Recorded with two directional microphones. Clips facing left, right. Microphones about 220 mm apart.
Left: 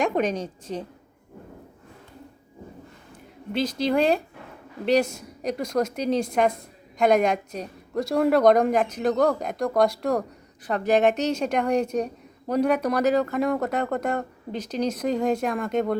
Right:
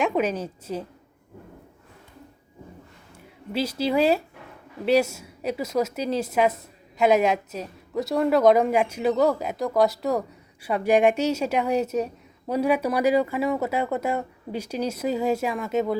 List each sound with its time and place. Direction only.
0.0 s a woman's voice: 5° right (ahead or behind)
3.5 s a woman's voice: 5° right (ahead or behind)